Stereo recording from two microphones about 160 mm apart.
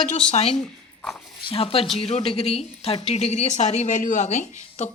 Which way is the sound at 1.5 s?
35° left (ahead or behind).